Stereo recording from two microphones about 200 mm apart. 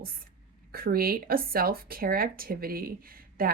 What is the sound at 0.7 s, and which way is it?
Speech, 50° right (ahead or behind).